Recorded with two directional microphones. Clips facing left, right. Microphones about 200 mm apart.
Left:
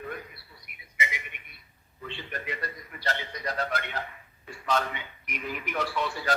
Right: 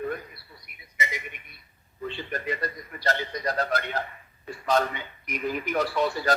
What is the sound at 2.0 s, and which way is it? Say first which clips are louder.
A man's voice: right 6 dB; 40° right (ahead or behind).